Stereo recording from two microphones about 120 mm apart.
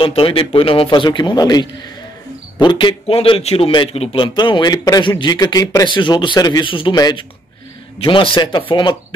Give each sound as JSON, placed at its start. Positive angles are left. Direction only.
{"t": 0.0, "sound": "a man's voice", "side_deg": 50}
{"t": 4.4, "sound": "a man's voice", "side_deg": 35}